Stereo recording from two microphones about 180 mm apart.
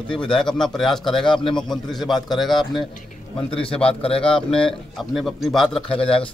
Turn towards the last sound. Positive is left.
turn(degrees=30)  # may be behind; listen again after turning